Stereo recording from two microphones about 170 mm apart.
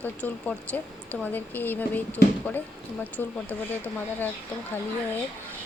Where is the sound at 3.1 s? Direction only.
10° left (ahead or behind).